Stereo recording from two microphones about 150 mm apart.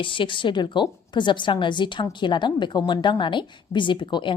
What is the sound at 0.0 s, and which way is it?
A woman's voice, 35° left (ahead or behind).